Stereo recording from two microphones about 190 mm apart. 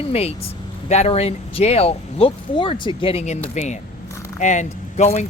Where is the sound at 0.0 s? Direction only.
30° left (ahead or behind).